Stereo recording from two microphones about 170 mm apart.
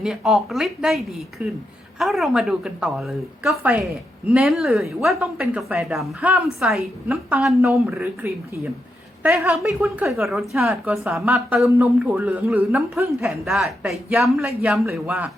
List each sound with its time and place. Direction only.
0.0 s a woman's voice: centre (ahead or behind)
9.5 s a woman's voice: 5° right (ahead or behind)